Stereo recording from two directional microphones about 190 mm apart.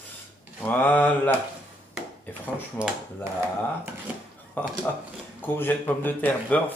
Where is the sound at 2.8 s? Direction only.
5° right (ahead or behind).